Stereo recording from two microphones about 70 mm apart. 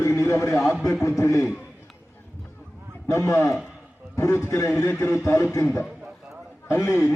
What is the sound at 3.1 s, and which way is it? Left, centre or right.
A man's voice, left.